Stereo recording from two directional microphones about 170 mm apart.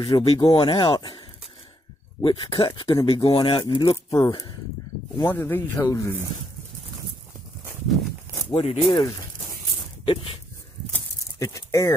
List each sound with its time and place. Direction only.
0.0 s speech: 35° left (ahead or behind)
2.2 s speech: 30° left (ahead or behind)
5.1 s speech: 15° left (ahead or behind)
8.5 s speech: 35° left (ahead or behind)
10.0 s dog: 35° left (ahead or behind)
10.9 s a sound: 20° left (ahead or behind)